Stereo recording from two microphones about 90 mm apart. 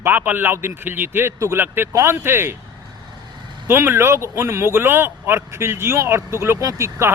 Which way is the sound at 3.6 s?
25° right (ahead or behind).